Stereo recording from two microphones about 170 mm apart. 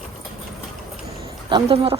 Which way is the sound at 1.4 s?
30° right (ahead or behind).